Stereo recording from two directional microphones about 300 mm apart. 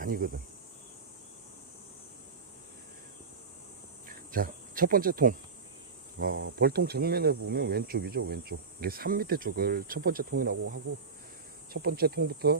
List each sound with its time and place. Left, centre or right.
0.0 s speech: right
4.3 s speech: right
11.7 s speech: right